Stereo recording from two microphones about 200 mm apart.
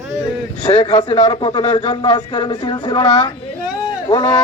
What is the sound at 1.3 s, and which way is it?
Speech, 20° left (ahead or behind).